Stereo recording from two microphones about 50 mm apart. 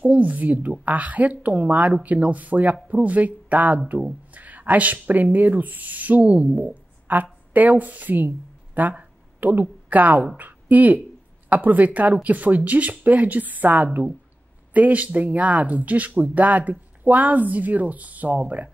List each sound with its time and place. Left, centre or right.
0.1 s a woman's voice: right